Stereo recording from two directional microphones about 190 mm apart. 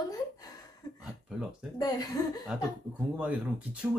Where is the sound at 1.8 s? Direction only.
20° left (ahead or behind).